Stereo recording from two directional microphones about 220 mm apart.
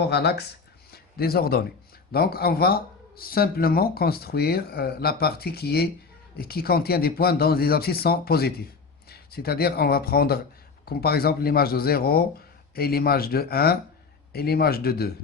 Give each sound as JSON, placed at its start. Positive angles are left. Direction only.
{"t": 0.0, "sound": "speech", "side_deg": 45}
{"t": 0.9, "sound": "a sound", "side_deg": 45}
{"t": 2.1, "sound": "speech", "side_deg": 45}